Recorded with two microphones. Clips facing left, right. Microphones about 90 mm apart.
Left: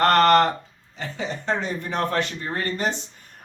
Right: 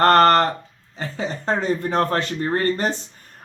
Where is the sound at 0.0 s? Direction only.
35° right (ahead or behind).